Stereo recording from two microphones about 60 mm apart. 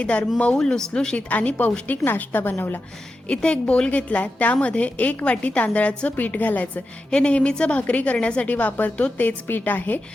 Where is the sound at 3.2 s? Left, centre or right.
Centre.